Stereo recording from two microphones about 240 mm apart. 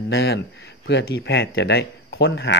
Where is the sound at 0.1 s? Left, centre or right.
Left.